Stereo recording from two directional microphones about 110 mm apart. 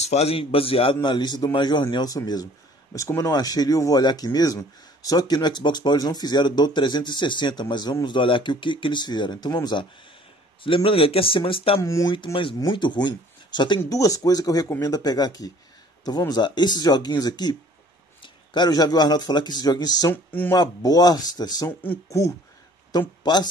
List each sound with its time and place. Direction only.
0.0 s a man's voice: 75° left (ahead or behind); by 9.8 s 40° left (ahead or behind)
10.6 s speech: 55° left (ahead or behind)
11.8 s speech: 25° left (ahead or behind)
12.5 s a man's voice: 40° left (ahead or behind)
13.9 s speech: 30° left (ahead or behind)
21.6 s speech: 25° left (ahead or behind)
22.9 s speech: 40° left (ahead or behind)